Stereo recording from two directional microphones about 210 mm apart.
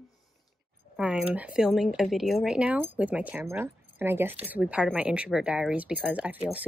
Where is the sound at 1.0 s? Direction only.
5° right (ahead or behind).